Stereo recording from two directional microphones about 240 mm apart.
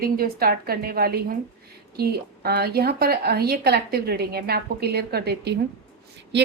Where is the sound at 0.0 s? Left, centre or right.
Right.